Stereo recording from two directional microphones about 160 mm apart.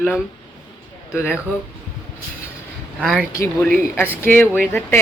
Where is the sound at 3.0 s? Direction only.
Centre (ahead or behind).